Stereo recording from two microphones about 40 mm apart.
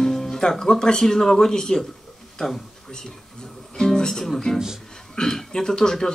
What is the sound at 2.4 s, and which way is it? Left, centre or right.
Speech, centre.